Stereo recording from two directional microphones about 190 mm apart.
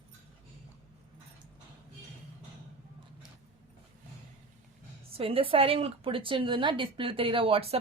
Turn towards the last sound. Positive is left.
turn(degrees=-30)  # may be behind; listen again after turning